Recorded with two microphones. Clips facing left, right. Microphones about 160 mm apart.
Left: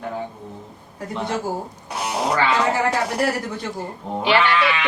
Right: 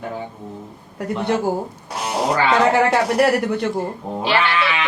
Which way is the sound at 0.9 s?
65° right (ahead or behind).